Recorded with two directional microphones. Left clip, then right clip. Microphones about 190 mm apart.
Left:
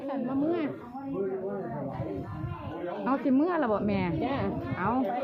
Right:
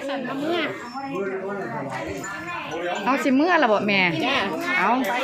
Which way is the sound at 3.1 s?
20° right (ahead or behind).